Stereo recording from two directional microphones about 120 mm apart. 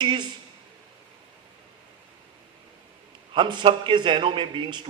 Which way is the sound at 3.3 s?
40° right (ahead or behind).